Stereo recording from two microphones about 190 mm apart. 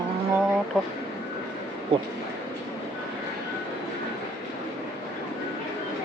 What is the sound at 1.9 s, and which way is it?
Speech, 30° right (ahead or behind).